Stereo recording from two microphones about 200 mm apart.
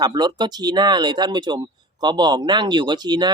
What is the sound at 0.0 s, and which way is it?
A man's voice, 20° right (ahead or behind).